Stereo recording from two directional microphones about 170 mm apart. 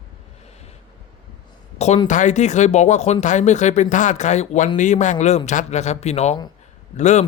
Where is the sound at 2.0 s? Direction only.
45° left (ahead or behind).